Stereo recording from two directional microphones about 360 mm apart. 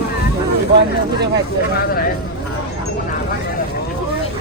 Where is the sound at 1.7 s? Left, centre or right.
Left.